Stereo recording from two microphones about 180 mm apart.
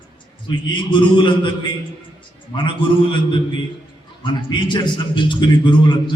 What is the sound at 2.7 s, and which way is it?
A man's voice, 30° left (ahead or behind).